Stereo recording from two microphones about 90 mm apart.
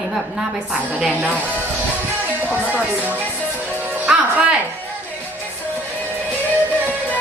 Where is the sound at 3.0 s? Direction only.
20° right (ahead or behind).